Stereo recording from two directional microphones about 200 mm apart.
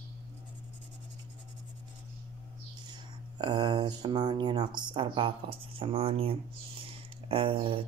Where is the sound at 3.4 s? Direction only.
20° right (ahead or behind).